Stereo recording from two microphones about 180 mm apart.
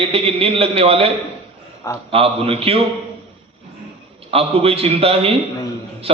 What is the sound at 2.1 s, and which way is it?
Speech, 35° right (ahead or behind).